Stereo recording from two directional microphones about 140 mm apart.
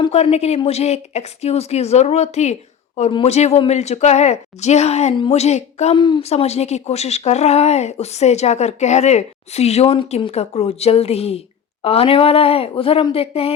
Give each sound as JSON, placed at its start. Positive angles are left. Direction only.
{"t": 0.1, "sound": "speech", "side_deg": 50}
{"t": 6.0, "sound": "a woman's voice", "side_deg": 35}
{"t": 6.2, "sound": "speech", "side_deg": 50}